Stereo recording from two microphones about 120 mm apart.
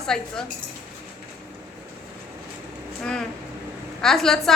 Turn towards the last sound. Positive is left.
turn(degrees=5)  # may be behind; listen again after turning